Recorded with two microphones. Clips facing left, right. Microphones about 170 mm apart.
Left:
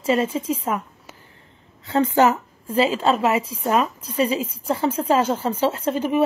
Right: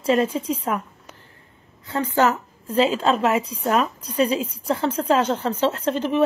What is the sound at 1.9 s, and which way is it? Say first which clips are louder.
Speech: left 3 dB; 20° left (ahead or behind).